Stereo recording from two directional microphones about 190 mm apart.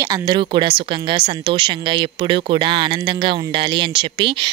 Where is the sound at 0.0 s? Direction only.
20° right (ahead or behind).